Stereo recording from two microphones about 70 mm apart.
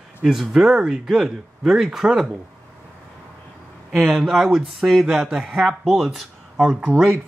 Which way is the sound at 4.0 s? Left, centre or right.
Centre.